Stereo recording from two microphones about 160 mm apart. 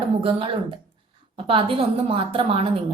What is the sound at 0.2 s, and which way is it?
Speech, 35° right (ahead or behind).